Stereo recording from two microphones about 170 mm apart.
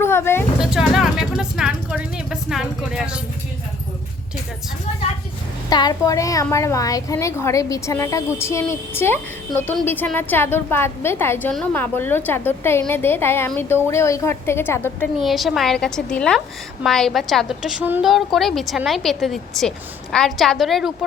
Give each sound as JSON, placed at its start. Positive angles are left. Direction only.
{"t": 0.0, "sound": "vehicle", "side_deg": 15}
{"t": 0.6, "sound": "a sound", "side_deg": -5}
{"t": 5.6, "sound": "a woman's voice", "side_deg": 25}
{"t": 15.2, "sound": "a woman's voice", "side_deg": 0}